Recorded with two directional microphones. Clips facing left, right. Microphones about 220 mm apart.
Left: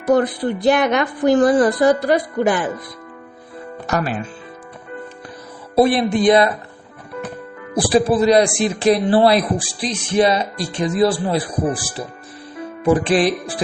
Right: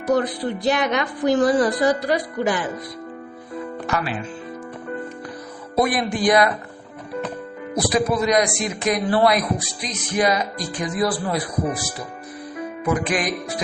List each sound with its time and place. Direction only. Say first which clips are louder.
0.0 s a woman's voice: left 4 dB; 55° left (ahead or behind)
3.8 s a woman's voice: left 5 dB; 45° left (ahead or behind)
5.7 s a man's voice: left 6 dB; 30° left (ahead or behind)
7.8 s a man's voice: left 5 dB; 30° left (ahead or behind)